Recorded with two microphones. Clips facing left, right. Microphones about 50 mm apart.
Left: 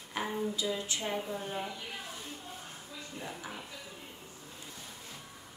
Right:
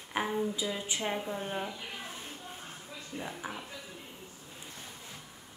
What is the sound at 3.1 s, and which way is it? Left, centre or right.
Speech, centre.